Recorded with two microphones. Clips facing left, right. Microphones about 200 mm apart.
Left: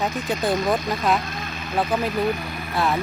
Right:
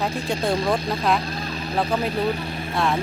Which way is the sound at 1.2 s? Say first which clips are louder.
Right 3 dB; 35° right (ahead or behind).